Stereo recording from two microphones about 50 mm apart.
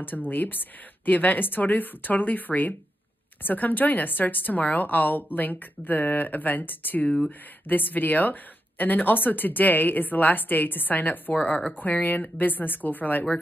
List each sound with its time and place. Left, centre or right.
0.0 s speech: left